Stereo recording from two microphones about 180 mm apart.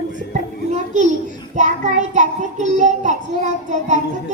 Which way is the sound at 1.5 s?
45° right (ahead or behind).